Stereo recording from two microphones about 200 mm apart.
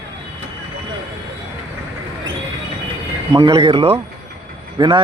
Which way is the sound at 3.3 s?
20° right (ahead or behind).